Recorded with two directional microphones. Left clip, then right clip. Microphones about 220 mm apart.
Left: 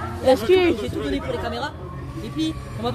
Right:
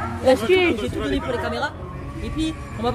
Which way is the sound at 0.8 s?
15° right (ahead or behind).